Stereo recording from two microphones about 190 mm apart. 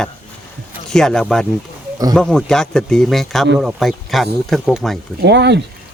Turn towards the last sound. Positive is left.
turn(degrees=-65)  # may be behind; listen again after turning